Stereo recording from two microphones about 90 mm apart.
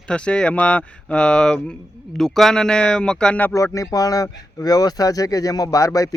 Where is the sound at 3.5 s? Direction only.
35° left (ahead or behind).